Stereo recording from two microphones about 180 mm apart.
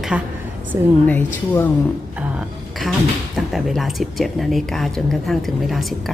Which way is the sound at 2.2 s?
5° right (ahead or behind).